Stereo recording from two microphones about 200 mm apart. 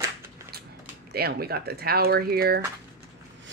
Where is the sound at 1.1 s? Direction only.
50° right (ahead or behind).